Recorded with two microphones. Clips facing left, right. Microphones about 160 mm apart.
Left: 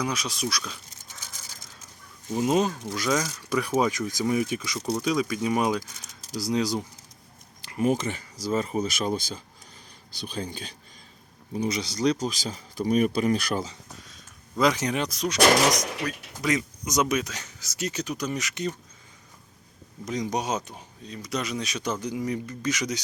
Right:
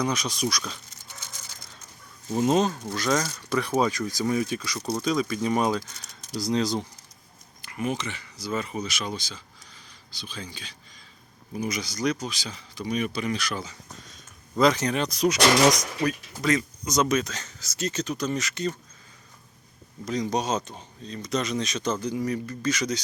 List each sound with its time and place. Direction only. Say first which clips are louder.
0.0 s speech: right 2 dB; 5° left (ahead or behind)
2.4 s speech: right 1 dB; 10° left (ahead or behind)
4.8 s speech: left 2 dB; centre (ahead or behind)
5.0 s speech: right 1 dB; 10° left (ahead or behind)
7.6 s a sound: left 5 dB; 35° left (ahead or behind)
7.9 s speech: left 4 dB; 45° left (ahead or behind)
11.5 s speech: left 2 dB; 30° left (ahead or behind)
12.2 s speech: left 5 dB; 45° left (ahead or behind)
14.6 s speech: right 2 dB; 15° left (ahead or behind)
15.1 s speech: right 6 dB; centre (ahead or behind)
16.3 s speech: right 2 dB; 15° left (ahead or behind)
20.1 s speech: right 2 dB; 15° left (ahead or behind)